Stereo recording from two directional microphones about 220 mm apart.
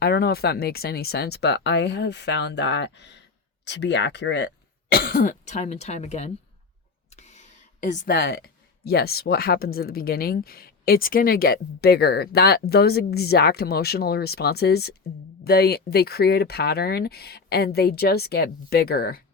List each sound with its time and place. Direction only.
0.0 s speech: 45° left (ahead or behind)
4.9 s speech: 40° left (ahead or behind)